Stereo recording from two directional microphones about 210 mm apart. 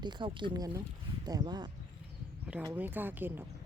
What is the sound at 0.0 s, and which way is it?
Speech, 20° right (ahead or behind).